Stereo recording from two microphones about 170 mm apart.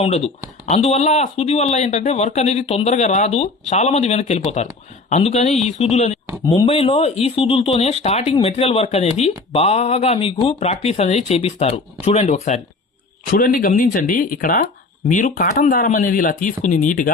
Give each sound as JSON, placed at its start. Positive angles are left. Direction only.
{"t": 0.0, "sound": "speech", "side_deg": 35}
{"t": 6.4, "sound": "speech", "side_deg": 20}
{"t": 6.7, "sound": "speech", "side_deg": 35}
{"t": 13.3, "sound": "speech", "side_deg": 60}